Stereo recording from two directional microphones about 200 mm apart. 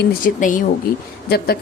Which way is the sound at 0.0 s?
45° left (ahead or behind).